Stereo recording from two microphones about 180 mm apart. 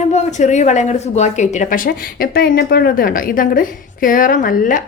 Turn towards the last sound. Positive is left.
turn(degrees=50)  # may be behind; listen again after turning